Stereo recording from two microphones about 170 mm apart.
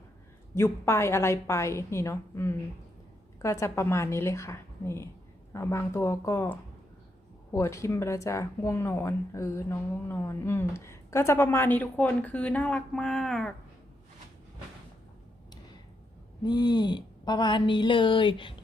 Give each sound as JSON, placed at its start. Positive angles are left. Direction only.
{"t": 0.5, "sound": "speech", "side_deg": 15}
{"t": 16.4, "sound": "speech", "side_deg": 25}